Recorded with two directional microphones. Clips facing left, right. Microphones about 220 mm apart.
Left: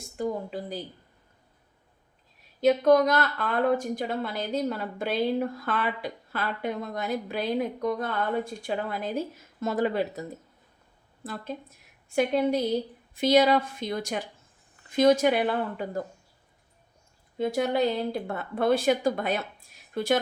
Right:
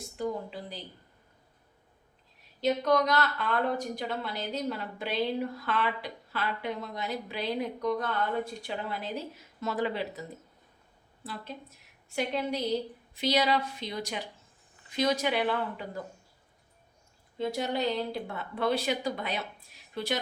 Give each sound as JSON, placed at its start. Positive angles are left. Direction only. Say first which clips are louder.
{"t": 0.2, "sound": "a sound", "louder": "left 3 dB", "side_deg": 45}
{"t": 2.6, "sound": "speech", "louder": "left 6 dB", "side_deg": 50}
{"t": 17.3, "sound": "speech", "louder": "left 5 dB", "side_deg": 50}